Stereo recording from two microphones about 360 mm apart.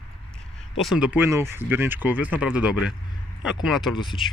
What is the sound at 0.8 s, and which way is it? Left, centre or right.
Speech, centre.